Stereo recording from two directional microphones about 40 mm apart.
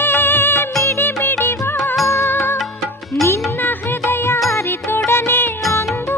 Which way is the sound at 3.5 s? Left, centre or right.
Left.